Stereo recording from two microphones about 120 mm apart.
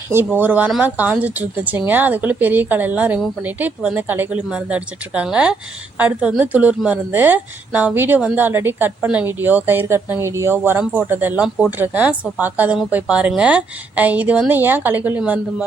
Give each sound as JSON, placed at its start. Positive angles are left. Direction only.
{"t": 0.1, "sound": "speech", "side_deg": -15}